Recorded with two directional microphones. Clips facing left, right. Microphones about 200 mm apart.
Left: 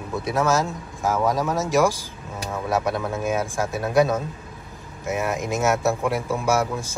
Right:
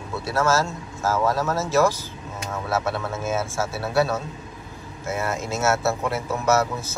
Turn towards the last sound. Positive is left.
turn(degrees=10)  # may be behind; listen again after turning